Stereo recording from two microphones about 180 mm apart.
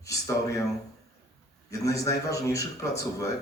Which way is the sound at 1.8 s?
15° left (ahead or behind).